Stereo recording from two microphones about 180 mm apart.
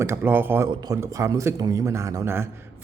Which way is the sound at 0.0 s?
15° right (ahead or behind).